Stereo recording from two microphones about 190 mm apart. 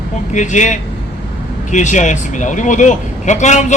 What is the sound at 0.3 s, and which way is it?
A man's voice, 40° left (ahead or behind).